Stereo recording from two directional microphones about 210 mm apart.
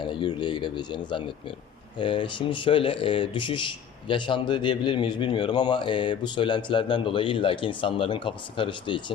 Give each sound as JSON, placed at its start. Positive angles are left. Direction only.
{"t": 0.0, "sound": "speech", "side_deg": 20}